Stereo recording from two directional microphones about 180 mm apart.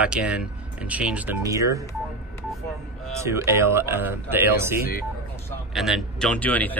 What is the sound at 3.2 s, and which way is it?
Speech, 15° right (ahead or behind).